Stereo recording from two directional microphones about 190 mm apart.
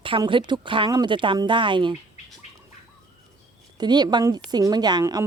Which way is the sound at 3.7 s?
20° right (ahead or behind).